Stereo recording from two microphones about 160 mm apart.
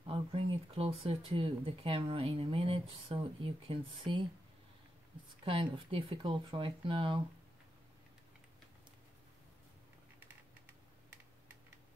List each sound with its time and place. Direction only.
0.0 s speech: 35° right (ahead or behind)
5.4 s speech: 35° right (ahead or behind)